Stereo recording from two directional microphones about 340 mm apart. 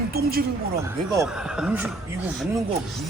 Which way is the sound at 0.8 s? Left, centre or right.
Centre.